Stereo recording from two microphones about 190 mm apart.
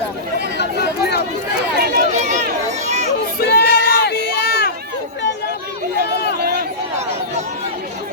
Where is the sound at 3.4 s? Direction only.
55° left (ahead or behind).